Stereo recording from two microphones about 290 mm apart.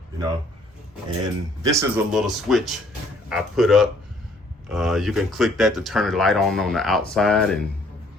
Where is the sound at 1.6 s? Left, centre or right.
Centre.